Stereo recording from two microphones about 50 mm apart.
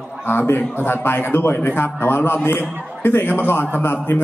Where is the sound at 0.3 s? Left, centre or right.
Left.